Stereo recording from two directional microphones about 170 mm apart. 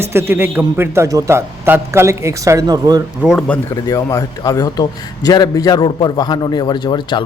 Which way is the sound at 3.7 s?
20° left (ahead or behind).